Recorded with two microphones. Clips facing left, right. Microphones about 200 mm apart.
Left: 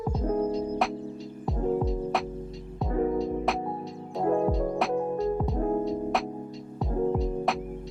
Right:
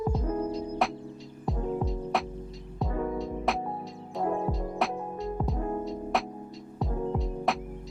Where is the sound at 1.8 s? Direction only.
Centre (ahead or behind).